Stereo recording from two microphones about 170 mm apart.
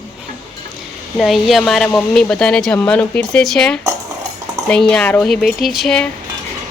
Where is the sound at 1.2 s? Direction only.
Centre (ahead or behind).